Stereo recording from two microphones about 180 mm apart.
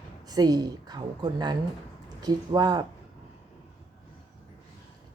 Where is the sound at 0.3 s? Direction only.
20° right (ahead or behind).